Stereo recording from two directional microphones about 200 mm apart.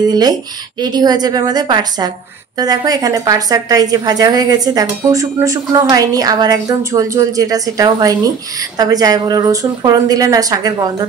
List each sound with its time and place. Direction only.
0.1 s a woman's voice: 20° right (ahead or behind)